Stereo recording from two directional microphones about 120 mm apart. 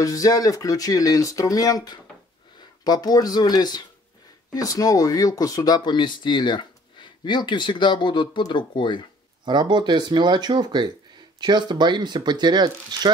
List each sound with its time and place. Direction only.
0.0 s speech: 30° left (ahead or behind)
9.4 s speech: 40° right (ahead or behind)